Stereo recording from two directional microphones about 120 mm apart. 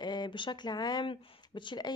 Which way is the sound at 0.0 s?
35° left (ahead or behind).